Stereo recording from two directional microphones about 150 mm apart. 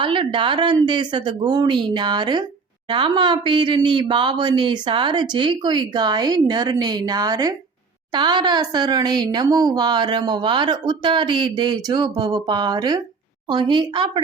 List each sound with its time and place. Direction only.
0.0 s speech: 35° right (ahead or behind)